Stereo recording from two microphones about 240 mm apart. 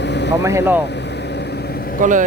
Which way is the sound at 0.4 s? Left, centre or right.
Centre.